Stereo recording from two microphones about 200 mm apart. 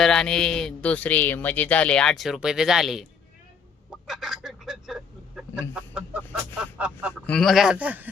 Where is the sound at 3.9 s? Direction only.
Centre (ahead or behind).